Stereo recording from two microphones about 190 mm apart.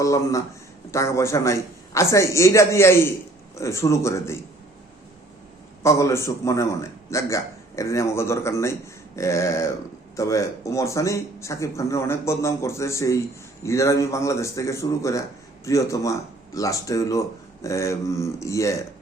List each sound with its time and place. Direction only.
0.0 s speech: 15° left (ahead or behind)
5.8 s speech: 15° left (ahead or behind)